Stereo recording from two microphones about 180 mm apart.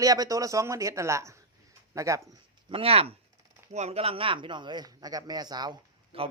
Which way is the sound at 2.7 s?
30° right (ahead or behind).